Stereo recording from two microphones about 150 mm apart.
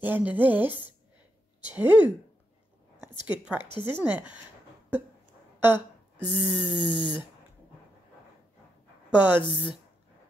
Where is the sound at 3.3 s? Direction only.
10° right (ahead or behind).